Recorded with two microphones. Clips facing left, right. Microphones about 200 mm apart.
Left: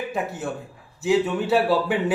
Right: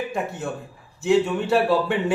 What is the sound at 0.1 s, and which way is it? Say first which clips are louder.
A man's voice: even; centre (ahead or behind).